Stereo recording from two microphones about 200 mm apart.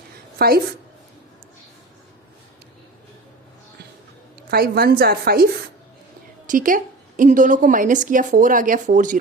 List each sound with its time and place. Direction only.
0.3 s a woman's voice: 50° right (ahead or behind)
4.5 s a woman's voice: 50° right (ahead or behind)
6.5 s a woman's voice: 40° right (ahead or behind)